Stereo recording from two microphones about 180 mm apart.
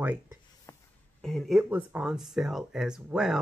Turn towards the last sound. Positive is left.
turn(degrees=-5)  # may be behind; listen again after turning